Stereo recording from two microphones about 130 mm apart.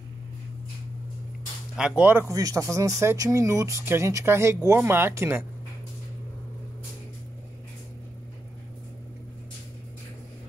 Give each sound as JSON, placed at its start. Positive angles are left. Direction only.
{"t": 1.8, "sound": "speech", "side_deg": -10}
{"t": 2.3, "sound": "speech", "side_deg": -25}